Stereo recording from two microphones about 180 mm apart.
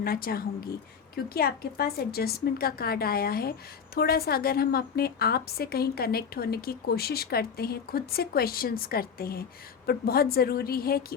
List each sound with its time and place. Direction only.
0.0 s a woman's voice: 55° left (ahead or behind)